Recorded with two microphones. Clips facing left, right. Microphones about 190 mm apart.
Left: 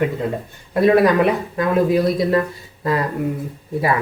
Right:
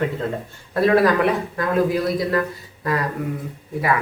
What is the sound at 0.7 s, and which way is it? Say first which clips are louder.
Speech: left 3 dB; 20° left (ahead or behind).